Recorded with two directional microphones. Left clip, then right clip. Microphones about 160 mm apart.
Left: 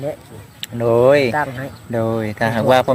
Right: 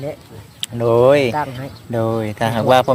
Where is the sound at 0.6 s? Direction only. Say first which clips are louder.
Right 1 dB; 15° right (ahead or behind).